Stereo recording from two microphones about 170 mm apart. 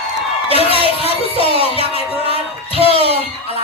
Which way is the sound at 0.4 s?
35° left (ahead or behind).